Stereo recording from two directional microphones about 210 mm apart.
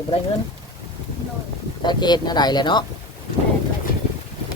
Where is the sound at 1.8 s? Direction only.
20° left (ahead or behind).